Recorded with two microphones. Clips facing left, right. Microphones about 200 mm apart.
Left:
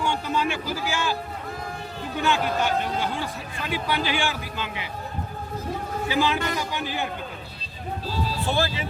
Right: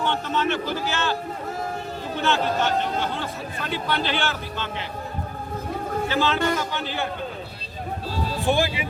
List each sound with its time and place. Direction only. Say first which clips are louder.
0.0 s a man's voice: right 1 dB; 10° left (ahead or behind)
2.2 s a man's voice: right 1 dB; 15° left (ahead or behind)
6.1 s a man's voice: right 1 dB; 15° left (ahead or behind)
8.4 s speech: right 5 dB; 15° right (ahead or behind)